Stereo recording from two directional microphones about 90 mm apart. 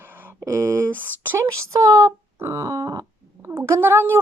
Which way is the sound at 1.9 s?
40° right (ahead or behind).